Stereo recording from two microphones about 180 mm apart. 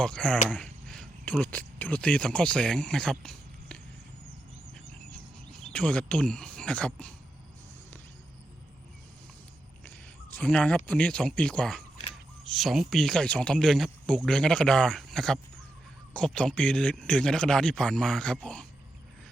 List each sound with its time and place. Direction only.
0.0 s speech: 5° left (ahead or behind)
5.5 s speech: 5° left (ahead or behind)
10.3 s speech: 5° left (ahead or behind)